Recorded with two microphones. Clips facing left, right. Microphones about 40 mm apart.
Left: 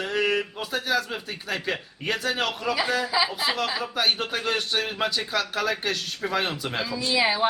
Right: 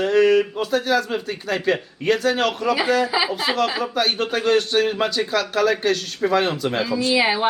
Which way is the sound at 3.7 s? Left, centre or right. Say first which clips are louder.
Right 3 dB; centre.